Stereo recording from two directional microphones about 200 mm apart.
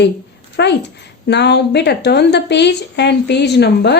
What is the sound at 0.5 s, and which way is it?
A woman's voice, 60° left (ahead or behind).